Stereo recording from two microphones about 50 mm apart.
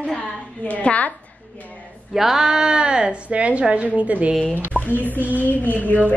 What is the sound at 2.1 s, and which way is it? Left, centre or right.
A woman's voice, centre.